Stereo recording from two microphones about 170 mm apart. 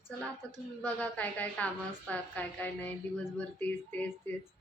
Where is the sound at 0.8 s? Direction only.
10° left (ahead or behind).